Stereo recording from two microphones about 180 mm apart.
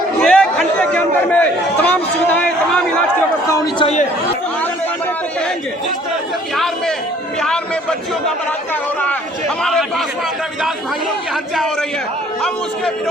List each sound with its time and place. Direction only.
0.2 s a man's voice: 5° left (ahead or behind)
3.8 s speech: 35° left (ahead or behind)
7.4 s a man's voice: 5° left (ahead or behind)
11.5 s a man's voice: centre (ahead or behind)